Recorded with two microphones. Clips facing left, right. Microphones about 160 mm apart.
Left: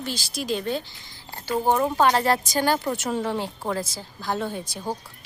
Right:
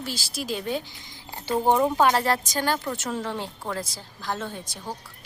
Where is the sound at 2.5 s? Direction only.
10° left (ahead or behind).